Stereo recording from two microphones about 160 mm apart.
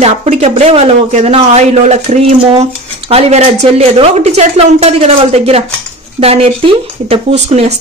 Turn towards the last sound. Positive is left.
turn(degrees=-40)  # may be behind; listen again after turning